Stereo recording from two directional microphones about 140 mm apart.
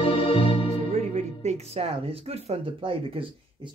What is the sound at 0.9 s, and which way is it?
Speech, 55° right (ahead or behind).